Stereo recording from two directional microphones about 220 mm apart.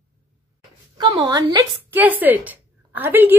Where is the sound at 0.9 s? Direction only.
20° right (ahead or behind).